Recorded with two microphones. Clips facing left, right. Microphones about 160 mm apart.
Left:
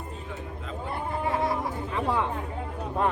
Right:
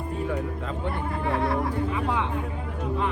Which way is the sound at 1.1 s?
20° left (ahead or behind).